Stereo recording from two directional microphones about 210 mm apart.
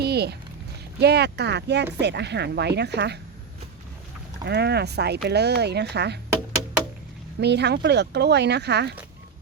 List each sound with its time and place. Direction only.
0.0 s a sound: 50° right (ahead or behind)
0.9 s speech: 50° right (ahead or behind)
4.4 s speech: 50° right (ahead or behind)
7.3 s speech: 55° right (ahead or behind)